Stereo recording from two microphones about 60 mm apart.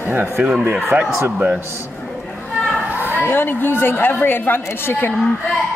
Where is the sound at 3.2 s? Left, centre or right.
Left.